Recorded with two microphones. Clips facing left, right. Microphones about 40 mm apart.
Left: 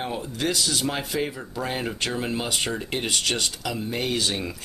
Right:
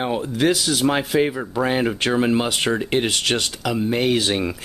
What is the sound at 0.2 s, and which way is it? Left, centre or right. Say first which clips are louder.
Speech: right 7 dB; right.